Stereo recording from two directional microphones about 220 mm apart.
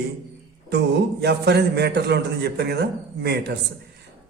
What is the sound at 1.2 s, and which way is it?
A man's voice, 50° right (ahead or behind).